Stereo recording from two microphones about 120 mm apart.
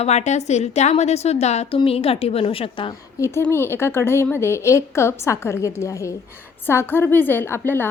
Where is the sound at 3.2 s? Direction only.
20° left (ahead or behind).